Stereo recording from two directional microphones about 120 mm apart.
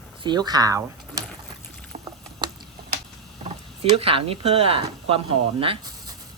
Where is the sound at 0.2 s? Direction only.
35° right (ahead or behind).